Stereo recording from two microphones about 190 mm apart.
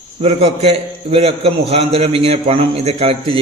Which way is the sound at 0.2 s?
30° right (ahead or behind).